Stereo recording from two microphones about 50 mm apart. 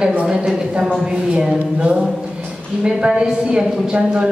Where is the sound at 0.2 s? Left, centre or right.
Centre.